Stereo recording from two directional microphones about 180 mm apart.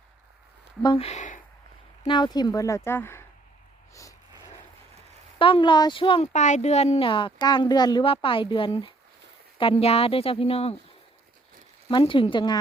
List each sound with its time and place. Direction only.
0.8 s speech: 30° left (ahead or behind)
2.0 s speech: 25° left (ahead or behind)
5.4 s speech: 30° left (ahead or behind)
11.9 s speech: 25° left (ahead or behind)